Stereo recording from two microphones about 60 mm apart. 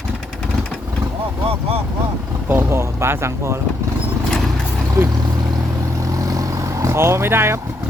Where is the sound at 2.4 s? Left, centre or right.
Right.